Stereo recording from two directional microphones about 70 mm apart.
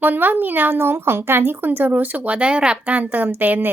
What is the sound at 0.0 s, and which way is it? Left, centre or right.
A woman's voice, right.